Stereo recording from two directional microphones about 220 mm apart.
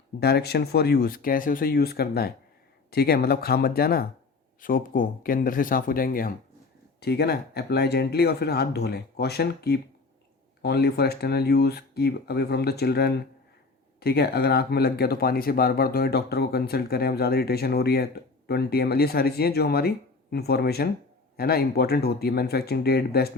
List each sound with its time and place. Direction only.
0.2 s speech: 45° left (ahead or behind)